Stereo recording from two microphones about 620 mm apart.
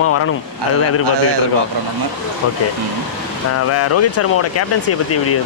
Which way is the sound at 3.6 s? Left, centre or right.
Left.